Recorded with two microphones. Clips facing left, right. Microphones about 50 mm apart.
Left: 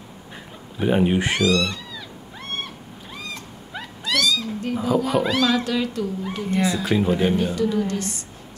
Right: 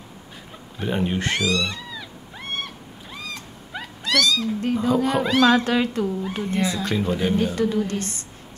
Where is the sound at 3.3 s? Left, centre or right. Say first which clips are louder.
Left 1 dB; centre.